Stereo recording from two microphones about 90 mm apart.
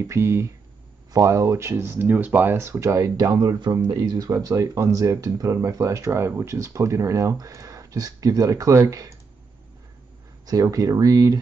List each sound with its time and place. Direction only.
0.0 s speech: 30° right (ahead or behind)
10.4 s speech: 45° right (ahead or behind)